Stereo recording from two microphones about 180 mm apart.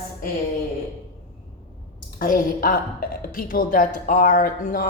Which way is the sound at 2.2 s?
50° left (ahead or behind).